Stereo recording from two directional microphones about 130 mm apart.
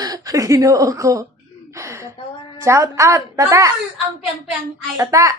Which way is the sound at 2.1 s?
40° left (ahead or behind).